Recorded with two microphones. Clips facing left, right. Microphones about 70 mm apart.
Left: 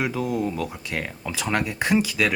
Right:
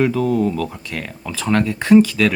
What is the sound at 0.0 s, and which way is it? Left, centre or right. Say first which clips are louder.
Speech: right 8 dB; centre.